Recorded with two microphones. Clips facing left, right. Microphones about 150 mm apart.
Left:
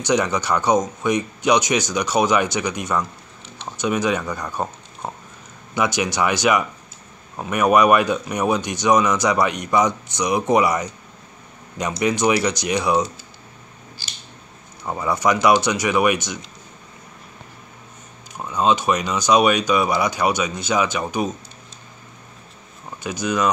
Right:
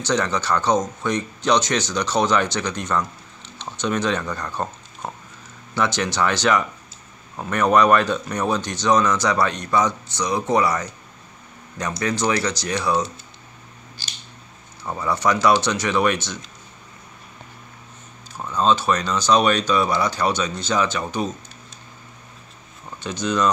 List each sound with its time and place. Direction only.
0.0 s speech: 15° left (ahead or behind)
12.0 s speech: 15° left (ahead or behind)
14.8 s speech: 15° left (ahead or behind)
18.3 s speech: 15° left (ahead or behind)
23.0 s speech: 10° left (ahead or behind)